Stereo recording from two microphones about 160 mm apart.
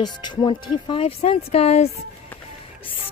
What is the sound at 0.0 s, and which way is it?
Speech, 25° left (ahead or behind).